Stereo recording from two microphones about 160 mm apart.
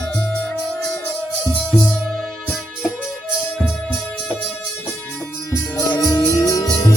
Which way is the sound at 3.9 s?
10° left (ahead or behind).